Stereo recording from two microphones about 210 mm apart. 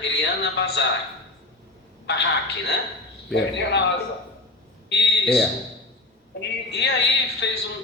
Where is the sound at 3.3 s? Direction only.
55° left (ahead or behind).